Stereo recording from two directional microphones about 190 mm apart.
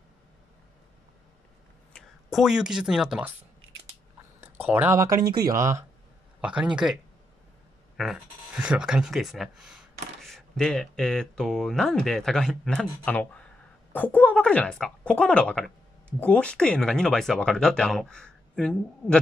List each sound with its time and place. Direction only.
2.0 s speech: centre (ahead or behind)
4.6 s speech: 10° right (ahead or behind)
8.0 s speech: 5° right (ahead or behind)